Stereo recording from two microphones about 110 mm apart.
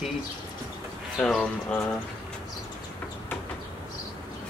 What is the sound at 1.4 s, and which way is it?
Speech, 10° left (ahead or behind).